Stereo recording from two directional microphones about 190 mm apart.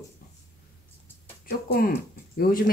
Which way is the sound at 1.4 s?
50° left (ahead or behind).